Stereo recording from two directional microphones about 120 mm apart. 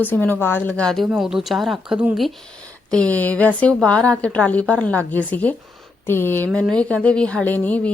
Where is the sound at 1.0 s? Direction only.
5° right (ahead or behind).